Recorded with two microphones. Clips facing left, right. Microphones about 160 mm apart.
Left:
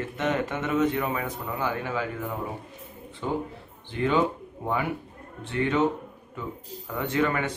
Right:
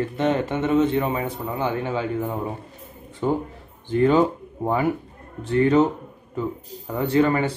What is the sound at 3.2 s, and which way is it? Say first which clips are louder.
Speech: right 6 dB; 45° right (ahead or behind).